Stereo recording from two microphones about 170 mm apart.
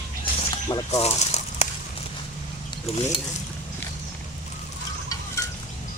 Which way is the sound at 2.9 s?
35° left (ahead or behind).